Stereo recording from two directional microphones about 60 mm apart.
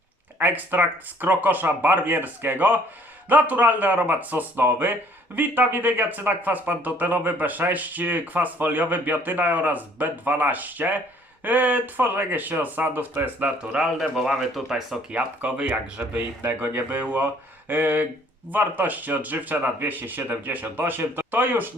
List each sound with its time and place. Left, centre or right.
0.3 s a man's voice: right
14.0 s speech: centre
15.1 s a man's voice: right